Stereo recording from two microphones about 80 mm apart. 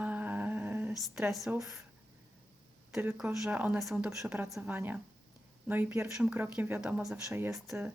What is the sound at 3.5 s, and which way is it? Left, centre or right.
Speech, centre.